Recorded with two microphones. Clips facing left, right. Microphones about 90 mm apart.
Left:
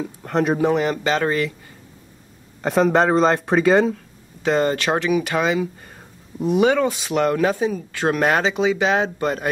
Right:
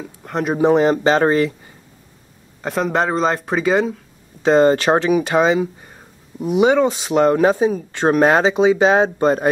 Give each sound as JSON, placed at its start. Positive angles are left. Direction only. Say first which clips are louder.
{"t": 0.0, "sound": "speech", "louder": "left 2 dB", "side_deg": 0}
{"t": 0.6, "sound": "speech", "louder": "right 5 dB", "side_deg": -30}
{"t": 2.6, "sound": "speech", "louder": "left 2 dB", "side_deg": 0}
{"t": 4.4, "sound": "speech", "louder": "right 6 dB", "side_deg": -25}